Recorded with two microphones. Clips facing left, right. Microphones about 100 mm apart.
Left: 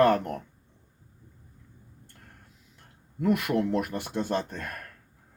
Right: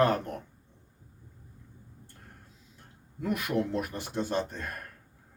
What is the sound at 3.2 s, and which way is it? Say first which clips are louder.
Speech: left 4 dB; 55° left (ahead or behind).